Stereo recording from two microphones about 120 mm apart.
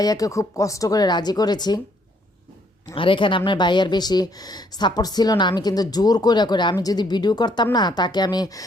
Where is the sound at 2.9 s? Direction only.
45° left (ahead or behind).